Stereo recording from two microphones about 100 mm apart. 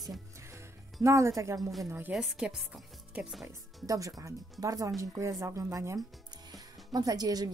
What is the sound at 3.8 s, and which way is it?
A woman's voice, 35° right (ahead or behind).